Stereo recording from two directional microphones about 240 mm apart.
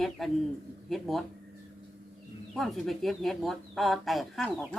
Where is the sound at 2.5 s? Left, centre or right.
Centre.